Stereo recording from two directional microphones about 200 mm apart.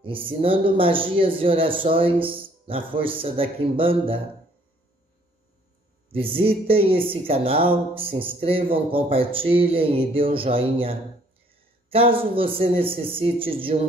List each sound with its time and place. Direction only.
0.0 s speech: 25° right (ahead or behind)
6.1 s speech: 25° right (ahead or behind)